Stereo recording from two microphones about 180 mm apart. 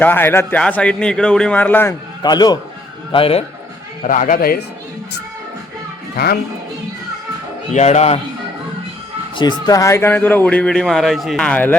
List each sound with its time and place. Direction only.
0.0 s a man's voice: 10° left (ahead or behind)
2.2 s a man's voice: 25° left (ahead or behind)
4.0 s speech: 45° left (ahead or behind)
6.1 s speech: 60° left (ahead or behind)
7.7 s speech: 40° left (ahead or behind)
9.3 s a man's voice: 25° left (ahead or behind); by 11.8 s 10° left (ahead or behind)